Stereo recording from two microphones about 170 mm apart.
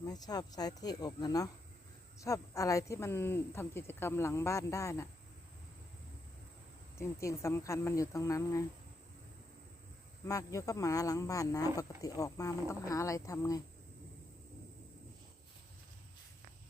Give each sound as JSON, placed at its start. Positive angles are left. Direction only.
{"t": 0.0, "sound": "speech", "side_deg": 25}
{"t": 7.0, "sound": "speech", "side_deg": 15}
{"t": 10.2, "sound": "speech", "side_deg": 20}